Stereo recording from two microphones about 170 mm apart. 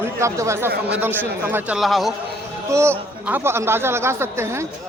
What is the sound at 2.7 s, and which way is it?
A man's voice, 15° right (ahead or behind).